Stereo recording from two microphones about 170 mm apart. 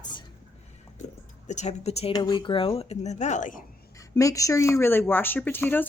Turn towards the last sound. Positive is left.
turn(degrees=10)  # may be behind; listen again after turning